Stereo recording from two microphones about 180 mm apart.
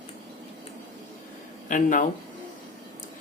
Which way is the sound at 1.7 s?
45° left (ahead or behind).